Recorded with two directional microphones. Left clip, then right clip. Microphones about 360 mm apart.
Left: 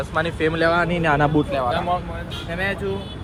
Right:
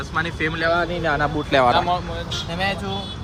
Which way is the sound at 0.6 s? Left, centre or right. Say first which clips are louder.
Left 1 dB; left.